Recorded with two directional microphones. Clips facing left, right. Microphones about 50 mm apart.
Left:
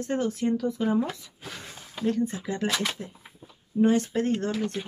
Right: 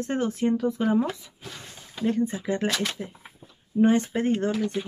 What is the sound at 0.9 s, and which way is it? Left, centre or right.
Speech, centre.